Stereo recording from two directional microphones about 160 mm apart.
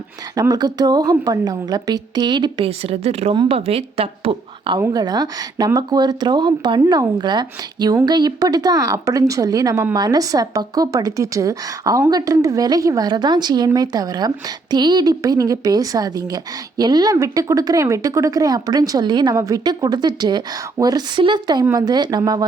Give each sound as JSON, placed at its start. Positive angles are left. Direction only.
{"t": 0.3, "sound": "a woman's voice", "side_deg": -25}